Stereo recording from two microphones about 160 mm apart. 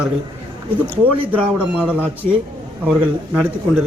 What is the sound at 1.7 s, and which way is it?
Speech, 10° right (ahead or behind).